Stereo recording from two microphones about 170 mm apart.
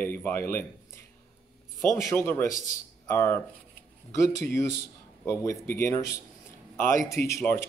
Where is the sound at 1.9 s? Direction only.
15° left (ahead or behind).